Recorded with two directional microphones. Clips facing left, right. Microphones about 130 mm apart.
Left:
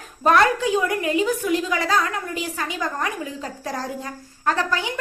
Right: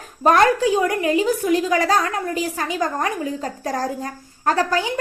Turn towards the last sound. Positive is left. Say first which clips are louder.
# right 3 dB
turn(degrees=-35)  # may be behind; listen again after turning